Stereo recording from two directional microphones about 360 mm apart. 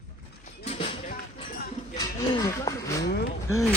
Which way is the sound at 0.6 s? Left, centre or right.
Centre.